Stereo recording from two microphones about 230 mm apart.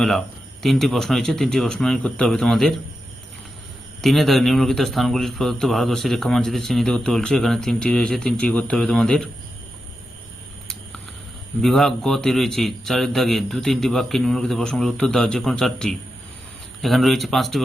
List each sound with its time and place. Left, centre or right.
0.6 s speech: centre
4.0 s speech: centre
11.6 s speech: centre